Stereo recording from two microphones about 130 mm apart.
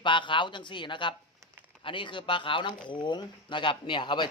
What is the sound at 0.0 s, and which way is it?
Speech, 40° left (ahead or behind).